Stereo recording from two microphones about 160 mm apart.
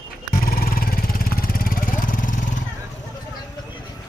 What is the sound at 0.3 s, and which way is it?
Vehicle, 65° left (ahead or behind).